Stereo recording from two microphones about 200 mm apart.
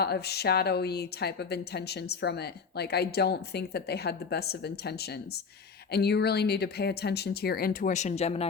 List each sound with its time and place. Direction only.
0.0 s a woman's voice: 55° left (ahead or behind); by 8.4 s 30° left (ahead or behind)